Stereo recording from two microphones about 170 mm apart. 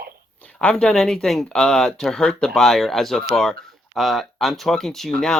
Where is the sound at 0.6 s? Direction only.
5° left (ahead or behind).